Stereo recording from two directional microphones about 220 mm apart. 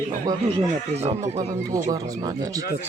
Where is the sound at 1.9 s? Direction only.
20° right (ahead or behind).